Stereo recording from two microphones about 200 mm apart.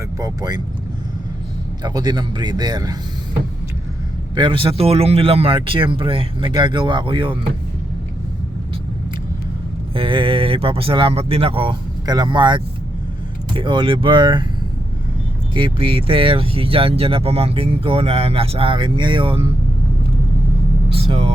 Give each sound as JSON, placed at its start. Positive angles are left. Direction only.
{"t": 0.2, "sound": "speech", "side_deg": -15}
{"t": 1.8, "sound": "speech", "side_deg": -20}
{"t": 4.4, "sound": "speech", "side_deg": -25}
{"t": 9.9, "sound": "speech", "side_deg": -25}
{"t": 15.5, "sound": "speech", "side_deg": -25}
{"t": 20.9, "sound": "vehicle", "side_deg": -30}